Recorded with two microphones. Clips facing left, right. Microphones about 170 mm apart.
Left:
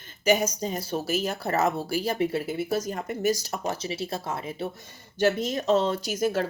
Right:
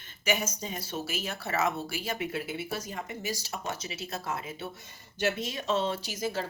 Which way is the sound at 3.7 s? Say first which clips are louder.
Left 7 dB; 35° left (ahead or behind).